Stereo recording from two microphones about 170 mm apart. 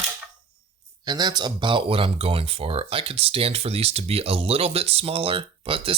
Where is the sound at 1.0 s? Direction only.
25° right (ahead or behind).